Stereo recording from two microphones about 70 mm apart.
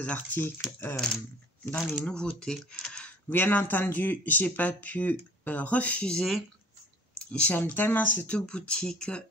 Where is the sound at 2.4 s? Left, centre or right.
Centre.